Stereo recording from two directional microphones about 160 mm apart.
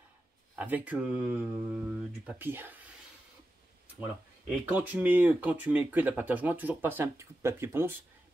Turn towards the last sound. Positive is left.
turn(degrees=-15)  # may be behind; listen again after turning